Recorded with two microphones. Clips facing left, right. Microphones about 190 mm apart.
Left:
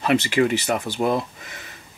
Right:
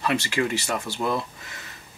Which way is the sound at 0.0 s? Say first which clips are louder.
Left 6 dB; 20° left (ahead or behind).